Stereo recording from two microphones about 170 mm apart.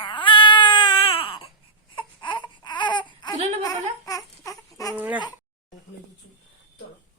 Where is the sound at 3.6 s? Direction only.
20° left (ahead or behind).